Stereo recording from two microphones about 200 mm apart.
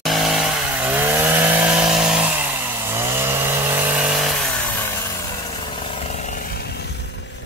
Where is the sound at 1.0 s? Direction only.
10° right (ahead or behind).